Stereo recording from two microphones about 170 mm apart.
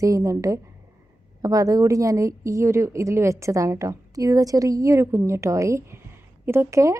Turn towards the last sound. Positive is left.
turn(degrees=-15)  # may be behind; listen again after turning